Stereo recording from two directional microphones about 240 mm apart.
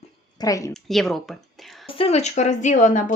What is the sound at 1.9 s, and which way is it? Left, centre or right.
Speech, left.